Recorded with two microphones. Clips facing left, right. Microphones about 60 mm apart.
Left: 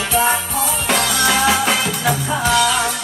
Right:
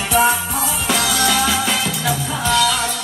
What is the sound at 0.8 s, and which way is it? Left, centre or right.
Music, left.